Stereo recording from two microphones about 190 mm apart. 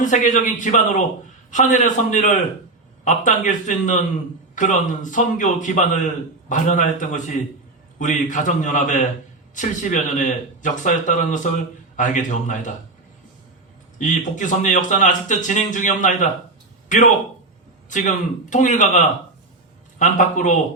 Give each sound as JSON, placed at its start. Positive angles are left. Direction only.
{"t": 0.0, "sound": "a man's voice", "side_deg": 40}
{"t": 14.0, "sound": "a man's voice", "side_deg": 40}